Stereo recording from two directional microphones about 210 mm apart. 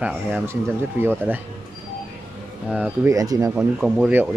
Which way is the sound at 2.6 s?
5° right (ahead or behind).